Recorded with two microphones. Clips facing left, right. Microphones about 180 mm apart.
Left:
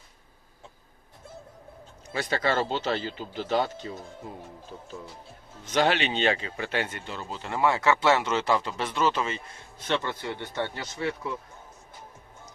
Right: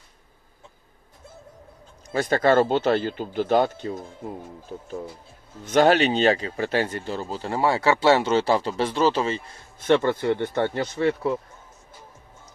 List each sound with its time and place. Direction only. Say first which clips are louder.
2.0 s speech: right 8 dB; 50° right (ahead or behind)
5.6 s a man's voice: right 7 dB; 50° right (ahead or behind)
9.8 s speech: right 10 dB; 55° right (ahead or behind)